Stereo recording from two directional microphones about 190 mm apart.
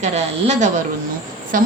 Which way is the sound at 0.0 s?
35° right (ahead or behind).